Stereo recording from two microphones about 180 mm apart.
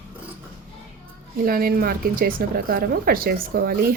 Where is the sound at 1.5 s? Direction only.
55° right (ahead or behind).